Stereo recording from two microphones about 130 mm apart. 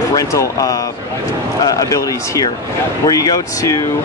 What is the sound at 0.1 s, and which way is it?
Speech, 25° left (ahead or behind).